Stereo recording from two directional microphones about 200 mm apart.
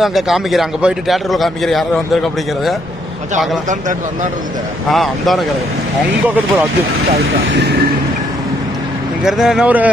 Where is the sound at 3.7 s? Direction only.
40° right (ahead or behind).